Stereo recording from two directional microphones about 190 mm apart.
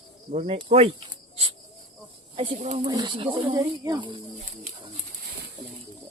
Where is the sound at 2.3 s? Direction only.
35° right (ahead or behind).